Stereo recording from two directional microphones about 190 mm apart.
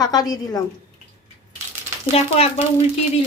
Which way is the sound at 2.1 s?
35° left (ahead or behind).